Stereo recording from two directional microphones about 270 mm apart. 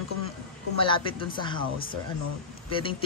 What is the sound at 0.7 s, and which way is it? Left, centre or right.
Speech, centre.